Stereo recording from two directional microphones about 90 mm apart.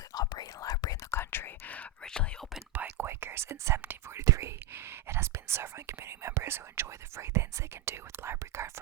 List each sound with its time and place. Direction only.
0.1 s whispering: 50° left (ahead or behind)
1.1 s whispering: 25° left (ahead or behind); by 2.5 s 5° left (ahead or behind)
2.7 s whispering: 20° right (ahead or behind)
4.2 s whispering: 35° right (ahead or behind)